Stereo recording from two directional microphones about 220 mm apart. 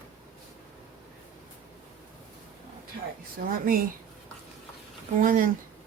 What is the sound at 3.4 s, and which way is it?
Speech, 40° right (ahead or behind).